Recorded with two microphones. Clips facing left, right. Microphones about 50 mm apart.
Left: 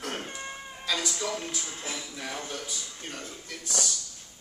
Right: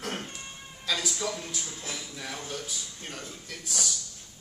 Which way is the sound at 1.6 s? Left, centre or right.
Left.